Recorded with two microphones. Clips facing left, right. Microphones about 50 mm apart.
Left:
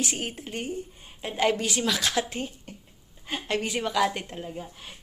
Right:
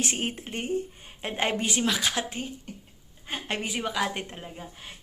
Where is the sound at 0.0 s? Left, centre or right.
Right; by 2.4 s centre.